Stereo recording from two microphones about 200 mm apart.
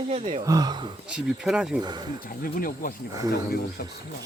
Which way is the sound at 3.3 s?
50° left (ahead or behind).